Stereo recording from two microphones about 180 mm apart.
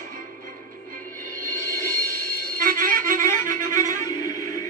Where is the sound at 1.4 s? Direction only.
50° right (ahead or behind).